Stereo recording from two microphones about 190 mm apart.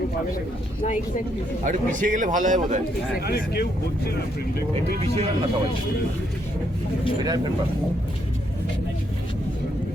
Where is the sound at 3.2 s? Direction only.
55° left (ahead or behind).